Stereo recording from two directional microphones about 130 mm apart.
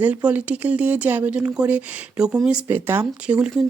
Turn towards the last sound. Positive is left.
turn(degrees=-10)  # may be behind; listen again after turning